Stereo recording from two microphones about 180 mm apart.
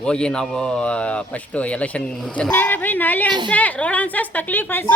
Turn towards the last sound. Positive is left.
turn(degrees=10)  # may be behind; listen again after turning